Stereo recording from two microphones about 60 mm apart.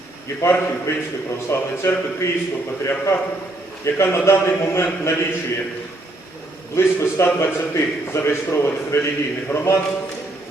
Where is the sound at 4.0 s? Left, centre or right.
Left.